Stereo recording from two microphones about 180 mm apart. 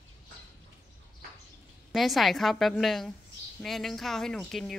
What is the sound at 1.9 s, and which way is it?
Speech, centre (ahead or behind).